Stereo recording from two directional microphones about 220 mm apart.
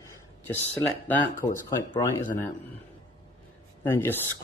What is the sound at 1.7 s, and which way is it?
Speech, 15° left (ahead or behind).